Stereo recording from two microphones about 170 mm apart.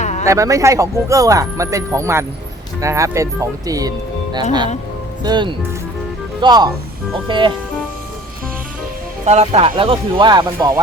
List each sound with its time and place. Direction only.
0.0 s a sound: 40° left (ahead or behind)
0.3 s speech: 20° right (ahead or behind)
9.2 s speech: 40° right (ahead or behind)